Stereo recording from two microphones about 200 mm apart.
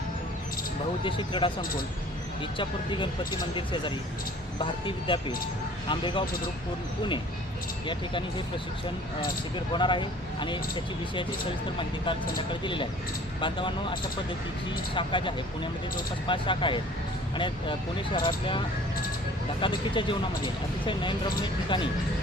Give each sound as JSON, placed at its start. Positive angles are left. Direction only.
{"t": 1.0, "sound": "speech", "side_deg": 25}
{"t": 4.6, "sound": "speech", "side_deg": 25}
{"t": 9.7, "sound": "speech", "side_deg": 25}
{"t": 12.5, "sound": "speech", "side_deg": 25}
{"t": 14.9, "sound": "speech", "side_deg": 25}
{"t": 19.6, "sound": "speech", "side_deg": 25}